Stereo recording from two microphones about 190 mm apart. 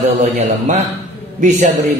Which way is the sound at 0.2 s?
35° right (ahead or behind).